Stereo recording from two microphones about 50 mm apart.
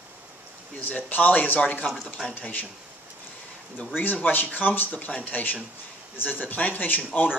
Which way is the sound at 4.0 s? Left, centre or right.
Left.